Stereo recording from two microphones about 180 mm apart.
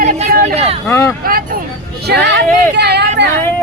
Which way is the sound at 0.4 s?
35° right (ahead or behind).